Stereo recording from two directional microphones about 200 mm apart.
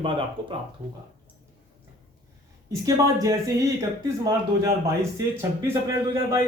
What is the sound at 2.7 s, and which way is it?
Speech, 15° right (ahead or behind).